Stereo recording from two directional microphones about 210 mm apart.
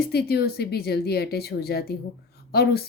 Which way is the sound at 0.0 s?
50° left (ahead or behind).